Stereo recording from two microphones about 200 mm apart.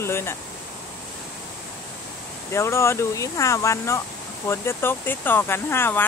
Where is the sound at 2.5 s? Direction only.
15° left (ahead or behind).